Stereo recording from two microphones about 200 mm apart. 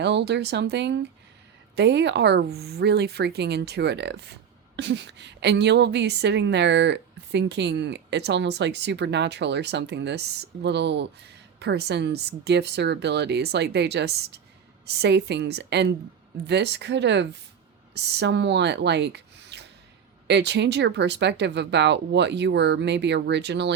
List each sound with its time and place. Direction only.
0.0 s a woman's voice: 60° right (ahead or behind)